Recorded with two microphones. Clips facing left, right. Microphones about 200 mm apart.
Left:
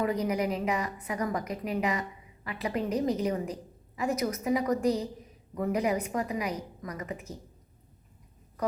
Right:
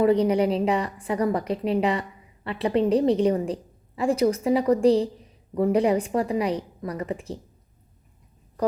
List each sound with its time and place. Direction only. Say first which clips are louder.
0.0 s a woman's voice: right 9 dB; 30° right (ahead or behind)